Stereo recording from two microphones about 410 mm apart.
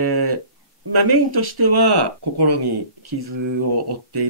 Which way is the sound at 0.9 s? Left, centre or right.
Right.